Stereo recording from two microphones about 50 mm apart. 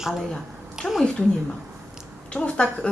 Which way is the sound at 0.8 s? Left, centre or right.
Centre.